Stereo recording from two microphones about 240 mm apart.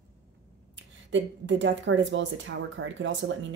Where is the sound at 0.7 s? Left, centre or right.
Right.